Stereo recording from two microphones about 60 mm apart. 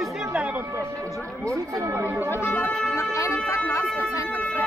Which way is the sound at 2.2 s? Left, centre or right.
Left.